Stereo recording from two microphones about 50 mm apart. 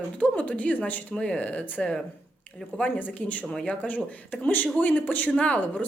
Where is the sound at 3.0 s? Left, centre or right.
Left.